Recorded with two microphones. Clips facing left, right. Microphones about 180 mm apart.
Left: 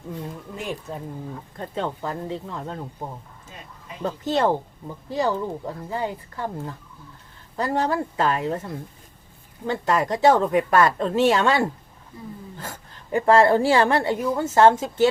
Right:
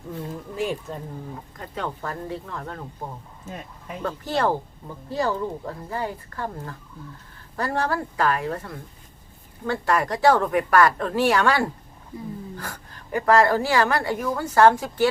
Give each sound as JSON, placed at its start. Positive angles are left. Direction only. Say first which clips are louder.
{"t": 1.5, "sound": "a woman's voice", "louder": "left 4 dB", "side_deg": 25}
{"t": 4.0, "sound": "a woman's voice", "louder": "left 2 dB", "side_deg": 20}